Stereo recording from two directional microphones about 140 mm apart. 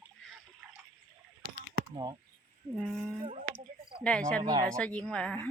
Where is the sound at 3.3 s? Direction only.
55° right (ahead or behind).